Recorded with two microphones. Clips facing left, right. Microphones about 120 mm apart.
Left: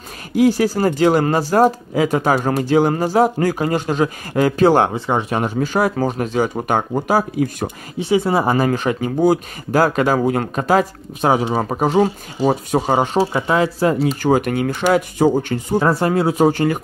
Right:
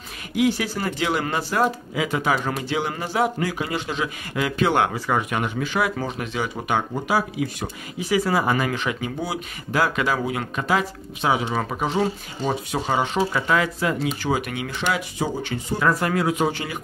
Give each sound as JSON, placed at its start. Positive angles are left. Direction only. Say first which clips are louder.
{"t": 0.4, "sound": "speech", "louder": "left 7 dB", "side_deg": 40}
{"t": 8.0, "sound": "speech", "louder": "left 5 dB", "side_deg": 25}
{"t": 13.2, "sound": "speech", "louder": "left 5 dB", "side_deg": 25}
{"t": 15.8, "sound": "speech", "louder": "left 3 dB", "side_deg": 30}